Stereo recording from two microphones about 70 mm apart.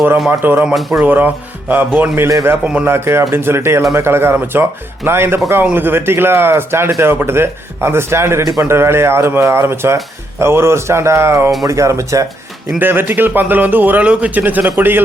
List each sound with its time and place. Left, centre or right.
0.3 s speech: right
0.7 s speech: centre
1.0 s speech: right
12.8 s speech: right